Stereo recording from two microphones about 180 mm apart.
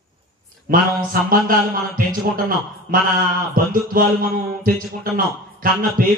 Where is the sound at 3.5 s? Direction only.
50° right (ahead or behind).